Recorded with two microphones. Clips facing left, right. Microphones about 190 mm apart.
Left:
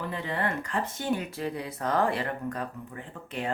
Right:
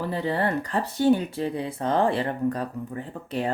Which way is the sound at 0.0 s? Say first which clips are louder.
Right 6 dB; 35° right (ahead or behind).